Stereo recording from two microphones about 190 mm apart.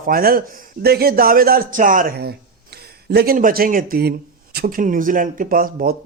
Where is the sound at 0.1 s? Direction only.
50° right (ahead or behind).